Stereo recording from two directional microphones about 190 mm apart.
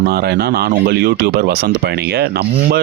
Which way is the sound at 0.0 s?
55° right (ahead or behind).